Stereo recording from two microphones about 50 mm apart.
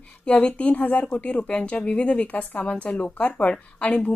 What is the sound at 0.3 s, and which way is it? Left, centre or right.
A woman's voice, left.